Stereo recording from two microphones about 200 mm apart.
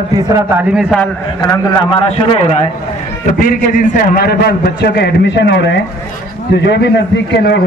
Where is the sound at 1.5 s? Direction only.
25° left (ahead or behind).